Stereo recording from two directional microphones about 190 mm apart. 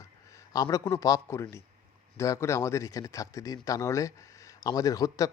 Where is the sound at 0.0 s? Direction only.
15° left (ahead or behind).